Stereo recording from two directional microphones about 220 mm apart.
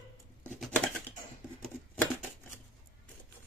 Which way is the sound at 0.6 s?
5° left (ahead or behind).